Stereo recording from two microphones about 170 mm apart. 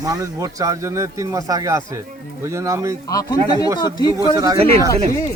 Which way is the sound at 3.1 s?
20° left (ahead or behind).